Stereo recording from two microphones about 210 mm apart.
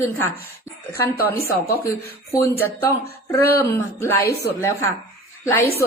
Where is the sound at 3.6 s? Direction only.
10° left (ahead or behind).